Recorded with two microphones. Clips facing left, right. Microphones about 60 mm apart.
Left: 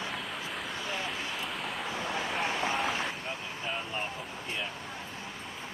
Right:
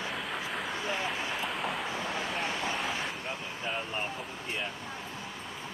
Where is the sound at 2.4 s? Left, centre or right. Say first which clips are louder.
Left 2 dB; left.